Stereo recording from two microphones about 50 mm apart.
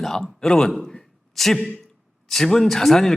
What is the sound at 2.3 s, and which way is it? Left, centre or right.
Speech, centre.